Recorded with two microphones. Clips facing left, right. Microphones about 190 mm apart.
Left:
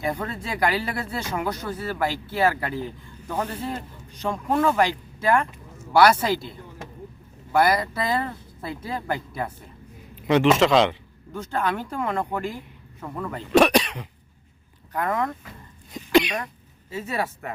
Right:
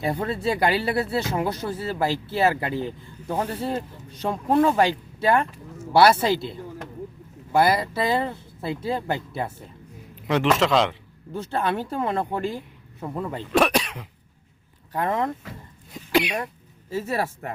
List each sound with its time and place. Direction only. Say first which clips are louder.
0.0 s speech: right 4 dB; 30° right (ahead or behind)
7.5 s speech: right 1 dB; 25° right (ahead or behind)
10.2 s a man's voice: left 3 dB; centre (ahead or behind)
11.3 s speech: right 1 dB; 30° right (ahead or behind)
13.1 s speech: right 2 dB; 20° right (ahead or behind)
13.5 s cough: left 4 dB; centre (ahead or behind)
14.9 s speech: right 1 dB; 25° right (ahead or behind)
16.1 s speech: left 3 dB; 10° right (ahead or behind)